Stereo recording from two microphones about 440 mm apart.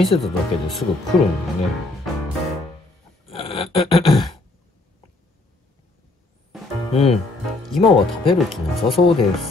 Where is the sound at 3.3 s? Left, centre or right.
Centre.